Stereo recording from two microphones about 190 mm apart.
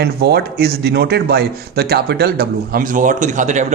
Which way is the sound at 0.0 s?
55° right (ahead or behind).